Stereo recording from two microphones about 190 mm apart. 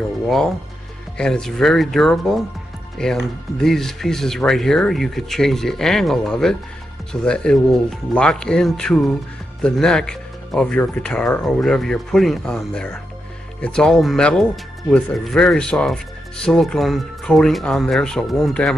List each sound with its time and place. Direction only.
1.1 s speech: 5° left (ahead or behind)